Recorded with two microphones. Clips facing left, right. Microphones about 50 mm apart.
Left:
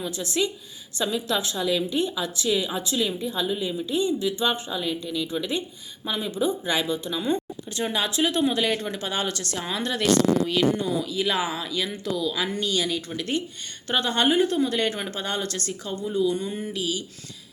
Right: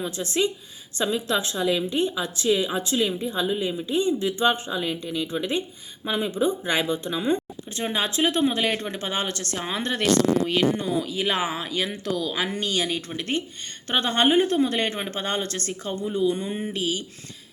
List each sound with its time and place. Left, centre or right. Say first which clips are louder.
0.0 s speech: right 2 dB; right